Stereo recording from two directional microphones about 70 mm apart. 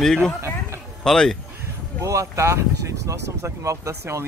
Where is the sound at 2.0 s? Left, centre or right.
Right.